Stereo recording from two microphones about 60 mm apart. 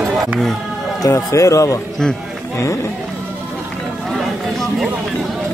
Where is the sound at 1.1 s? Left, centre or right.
Left.